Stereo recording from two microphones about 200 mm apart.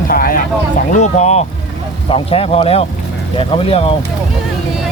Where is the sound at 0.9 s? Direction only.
35° left (ahead or behind).